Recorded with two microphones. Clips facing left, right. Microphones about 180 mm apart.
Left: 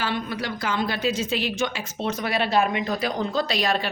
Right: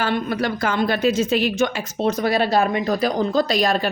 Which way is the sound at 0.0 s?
50° right (ahead or behind).